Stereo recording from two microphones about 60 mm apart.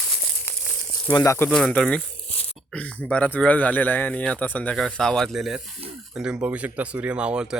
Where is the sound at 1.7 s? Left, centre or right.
Centre.